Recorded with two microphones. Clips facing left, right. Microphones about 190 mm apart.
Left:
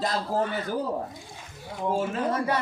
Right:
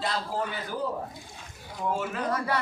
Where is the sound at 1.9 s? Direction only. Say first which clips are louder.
Left 3 dB; 30° left (ahead or behind).